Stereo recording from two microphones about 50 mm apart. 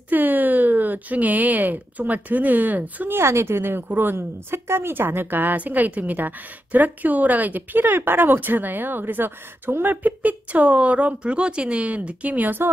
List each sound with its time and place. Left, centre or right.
0.1 s speech: right
3.1 s a woman's voice: right